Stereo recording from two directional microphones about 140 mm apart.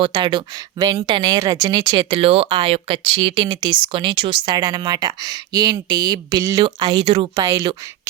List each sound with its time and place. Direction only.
0.0 s speech: 35° right (ahead or behind)
2.1 s speech: 45° right (ahead or behind)